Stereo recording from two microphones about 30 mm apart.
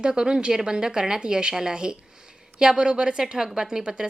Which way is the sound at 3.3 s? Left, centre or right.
Right.